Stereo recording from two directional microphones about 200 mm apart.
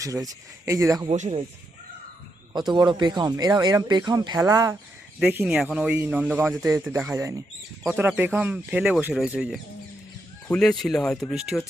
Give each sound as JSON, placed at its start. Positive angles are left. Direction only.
{"t": 0.0, "sound": "a man's voice", "side_deg": -15}
{"t": 1.0, "sound": "speech", "side_deg": -30}
{"t": 2.5, "sound": "a man's voice", "side_deg": -20}